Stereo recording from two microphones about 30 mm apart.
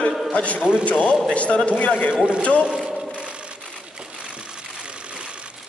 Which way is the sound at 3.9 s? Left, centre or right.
Right.